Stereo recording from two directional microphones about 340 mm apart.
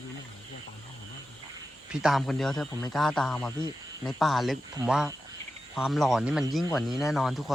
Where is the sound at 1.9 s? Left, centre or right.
Centre.